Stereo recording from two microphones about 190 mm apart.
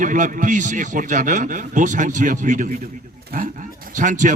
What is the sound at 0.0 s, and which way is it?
A man's voice, 45° right (ahead or behind).